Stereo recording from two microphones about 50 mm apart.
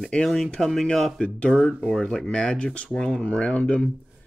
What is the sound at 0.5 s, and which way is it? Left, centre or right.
Speech, centre.